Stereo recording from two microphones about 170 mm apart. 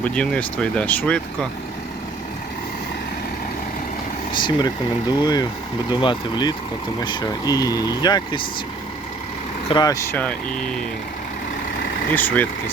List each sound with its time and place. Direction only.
0.0 s speech: 5° left (ahead or behind)
4.3 s speech: 25° left (ahead or behind)
9.6 s speech: 25° left (ahead or behind); by 10.8 s 10° left (ahead or behind)
12.1 s speech: 10° left (ahead or behind)